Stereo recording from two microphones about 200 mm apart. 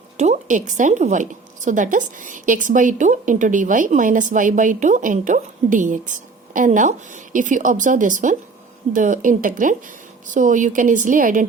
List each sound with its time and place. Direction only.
0.2 s a woman's voice: 35° right (ahead or behind)